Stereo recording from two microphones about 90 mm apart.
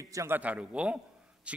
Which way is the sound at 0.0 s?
35° right (ahead or behind).